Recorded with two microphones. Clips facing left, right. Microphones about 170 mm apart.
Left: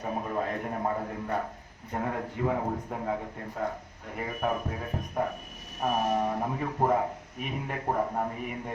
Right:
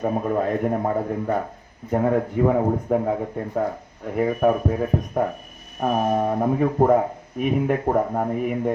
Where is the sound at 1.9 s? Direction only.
55° right (ahead or behind).